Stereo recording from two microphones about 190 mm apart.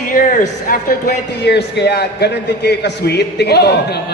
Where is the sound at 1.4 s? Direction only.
60° left (ahead or behind).